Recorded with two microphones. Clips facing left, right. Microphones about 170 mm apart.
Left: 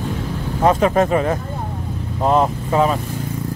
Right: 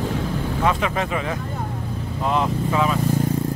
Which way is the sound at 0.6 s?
40° left (ahead or behind).